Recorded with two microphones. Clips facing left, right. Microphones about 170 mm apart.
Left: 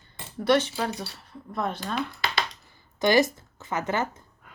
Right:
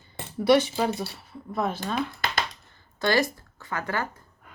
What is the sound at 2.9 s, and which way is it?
Speech, 15° left (ahead or behind).